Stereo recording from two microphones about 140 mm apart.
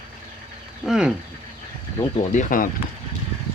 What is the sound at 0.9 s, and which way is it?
Speech, 5° right (ahead or behind).